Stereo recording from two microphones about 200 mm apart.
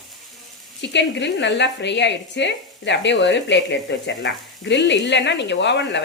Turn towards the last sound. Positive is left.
turn(degrees=60)  # may be behind; listen again after turning